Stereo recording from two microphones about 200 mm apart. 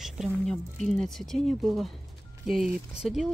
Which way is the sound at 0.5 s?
Centre (ahead or behind).